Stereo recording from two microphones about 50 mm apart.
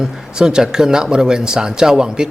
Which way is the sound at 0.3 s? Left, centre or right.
Centre.